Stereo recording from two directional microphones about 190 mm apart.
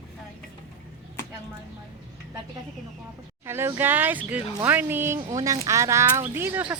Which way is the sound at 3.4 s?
15° right (ahead or behind).